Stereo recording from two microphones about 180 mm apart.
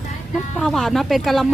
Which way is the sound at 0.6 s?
Centre (ahead or behind).